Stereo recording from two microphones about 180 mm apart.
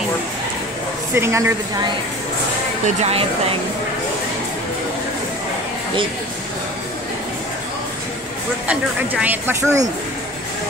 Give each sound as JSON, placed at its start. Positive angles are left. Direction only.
{"t": 1.1, "sound": "speech", "side_deg": -15}
{"t": 3.0, "sound": "speech", "side_deg": -35}
{"t": 8.6, "sound": "speech", "side_deg": -10}